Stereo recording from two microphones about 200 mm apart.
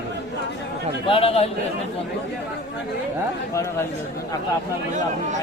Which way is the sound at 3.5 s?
15° left (ahead or behind).